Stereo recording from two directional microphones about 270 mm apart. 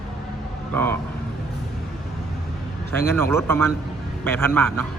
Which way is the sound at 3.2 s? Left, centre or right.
Centre.